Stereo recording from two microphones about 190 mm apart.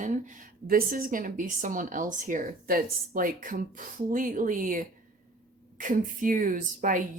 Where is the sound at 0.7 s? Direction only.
50° right (ahead or behind).